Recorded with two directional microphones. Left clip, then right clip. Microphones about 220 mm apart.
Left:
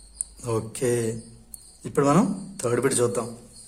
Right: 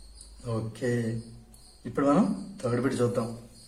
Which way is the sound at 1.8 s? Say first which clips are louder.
Left 4 dB; 55° left (ahead or behind).